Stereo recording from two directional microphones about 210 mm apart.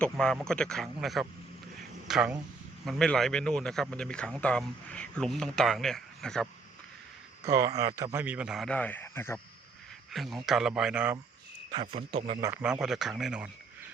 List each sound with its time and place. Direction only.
0.0 s speech: 5° left (ahead or behind)
7.4 s speech: 15° right (ahead or behind); by 9.4 s 10° left (ahead or behind)
10.1 s speech: centre (ahead or behind)
11.8 s speech: 30° right (ahead or behind)
12.6 s speech: 5° right (ahead or behind)